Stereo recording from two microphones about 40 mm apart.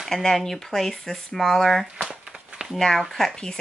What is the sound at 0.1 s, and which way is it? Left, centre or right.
Speech, centre.